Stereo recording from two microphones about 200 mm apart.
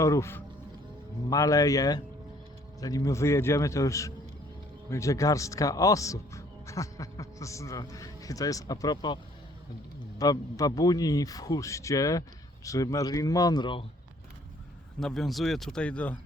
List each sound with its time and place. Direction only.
0.0 s a man's voice: 15° left (ahead or behind)
10.2 s a man's voice: 20° left (ahead or behind)
15.0 s speech: centre (ahead or behind)